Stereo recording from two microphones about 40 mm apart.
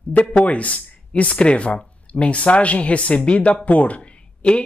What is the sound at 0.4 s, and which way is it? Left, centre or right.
Speech, left.